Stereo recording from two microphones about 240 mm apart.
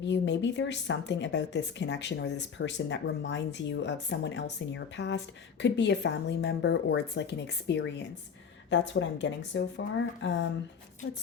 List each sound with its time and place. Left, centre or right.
0.0 s speech: left